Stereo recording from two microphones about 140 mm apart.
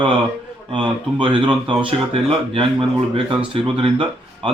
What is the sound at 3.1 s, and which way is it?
Speech, 40° right (ahead or behind).